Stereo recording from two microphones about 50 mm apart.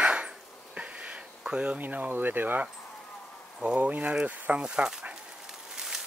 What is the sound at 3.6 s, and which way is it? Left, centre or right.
Speech, right.